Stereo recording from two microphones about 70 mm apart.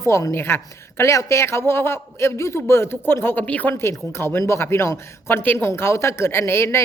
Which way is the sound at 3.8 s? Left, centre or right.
Left.